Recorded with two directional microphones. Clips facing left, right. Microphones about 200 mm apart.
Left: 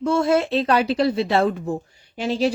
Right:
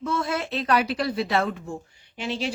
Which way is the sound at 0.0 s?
30° left (ahead or behind).